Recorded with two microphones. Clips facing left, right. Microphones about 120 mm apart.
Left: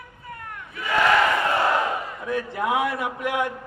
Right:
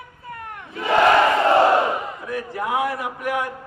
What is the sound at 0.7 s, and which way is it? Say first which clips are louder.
Crowd: right 4 dB; 30° right (ahead or behind).